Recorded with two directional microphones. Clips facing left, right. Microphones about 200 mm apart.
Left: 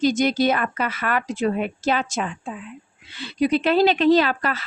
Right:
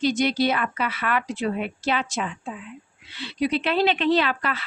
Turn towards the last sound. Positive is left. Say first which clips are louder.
# left 4 dB
turn(degrees=40)  # may be behind; listen again after turning